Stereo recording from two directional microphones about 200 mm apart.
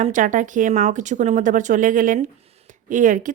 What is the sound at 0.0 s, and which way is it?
A woman's voice, 40° right (ahead or behind).